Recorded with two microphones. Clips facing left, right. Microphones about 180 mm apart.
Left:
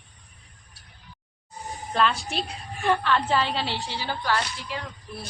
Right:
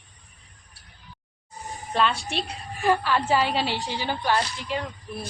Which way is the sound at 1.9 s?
Centre (ahead or behind).